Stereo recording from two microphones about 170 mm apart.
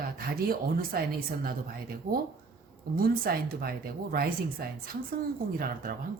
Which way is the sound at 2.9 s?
65° right (ahead or behind).